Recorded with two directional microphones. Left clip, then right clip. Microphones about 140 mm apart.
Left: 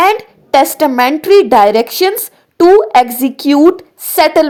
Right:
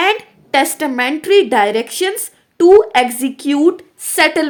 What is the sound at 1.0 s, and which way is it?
A woman's voice, 40° left (ahead or behind).